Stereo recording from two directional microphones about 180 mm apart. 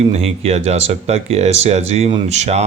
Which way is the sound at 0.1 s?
35° right (ahead or behind).